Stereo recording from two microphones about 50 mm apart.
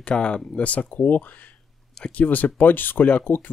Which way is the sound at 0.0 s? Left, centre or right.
Left.